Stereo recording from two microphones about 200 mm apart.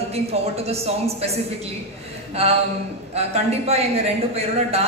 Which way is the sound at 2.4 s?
30° right (ahead or behind).